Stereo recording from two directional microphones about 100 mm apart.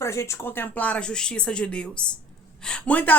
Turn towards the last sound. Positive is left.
turn(degrees=15)  # may be behind; listen again after turning